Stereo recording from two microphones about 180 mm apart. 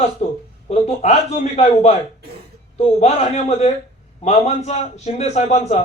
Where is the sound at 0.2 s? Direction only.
40° left (ahead or behind).